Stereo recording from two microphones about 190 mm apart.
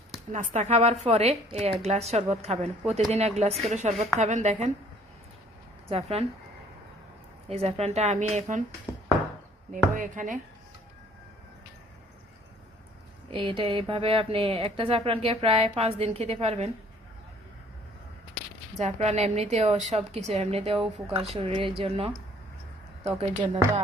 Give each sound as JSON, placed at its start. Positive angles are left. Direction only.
{"t": 0.5, "sound": "a woman's voice", "side_deg": -35}
{"t": 5.9, "sound": "a woman's voice", "side_deg": -35}
{"t": 7.5, "sound": "a woman's voice", "side_deg": -35}
{"t": 9.7, "sound": "speech", "side_deg": -45}
{"t": 13.3, "sound": "a woman's voice", "side_deg": -25}
{"t": 18.8, "sound": "a woman's voice", "side_deg": -35}